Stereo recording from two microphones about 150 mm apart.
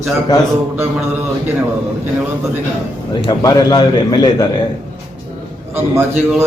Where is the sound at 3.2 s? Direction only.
30° left (ahead or behind).